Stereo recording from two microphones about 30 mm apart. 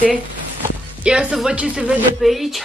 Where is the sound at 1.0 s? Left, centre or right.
Right.